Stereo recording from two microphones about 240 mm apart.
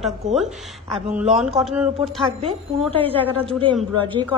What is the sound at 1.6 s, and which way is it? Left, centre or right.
Speech, centre.